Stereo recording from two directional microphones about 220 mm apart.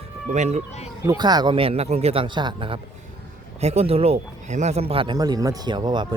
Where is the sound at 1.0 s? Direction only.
20° right (ahead or behind).